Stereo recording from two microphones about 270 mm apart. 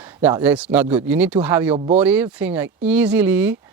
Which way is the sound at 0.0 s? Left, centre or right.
Centre.